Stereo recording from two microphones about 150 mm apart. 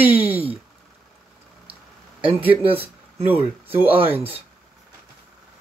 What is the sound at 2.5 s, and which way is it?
Speech, 40° right (ahead or behind).